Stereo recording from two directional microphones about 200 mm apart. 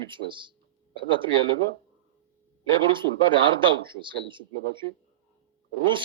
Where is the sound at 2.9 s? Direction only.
25° right (ahead or behind).